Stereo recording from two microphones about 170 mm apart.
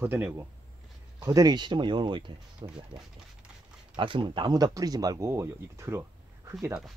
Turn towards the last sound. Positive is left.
turn(degrees=-15)  # may be behind; listen again after turning